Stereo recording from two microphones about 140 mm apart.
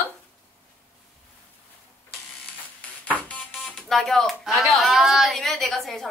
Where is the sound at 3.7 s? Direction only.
Centre (ahead or behind).